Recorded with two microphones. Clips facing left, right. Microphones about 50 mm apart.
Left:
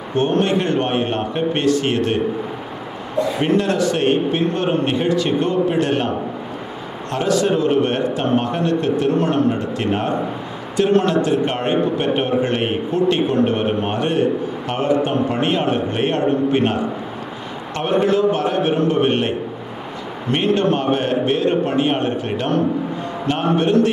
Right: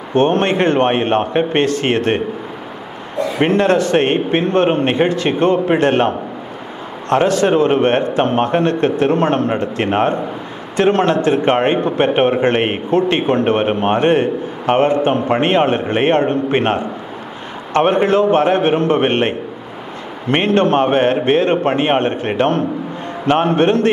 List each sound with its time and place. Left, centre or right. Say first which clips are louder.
0.1 s a man's voice: right 3 dB; right
3.3 s a man's voice: right 6 dB; right